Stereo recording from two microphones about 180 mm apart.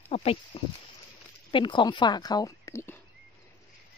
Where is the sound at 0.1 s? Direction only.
35° left (ahead or behind).